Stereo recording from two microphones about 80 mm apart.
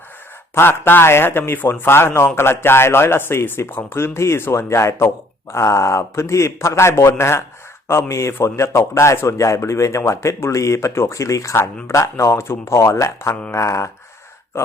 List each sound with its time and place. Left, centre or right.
0.5 s speech: left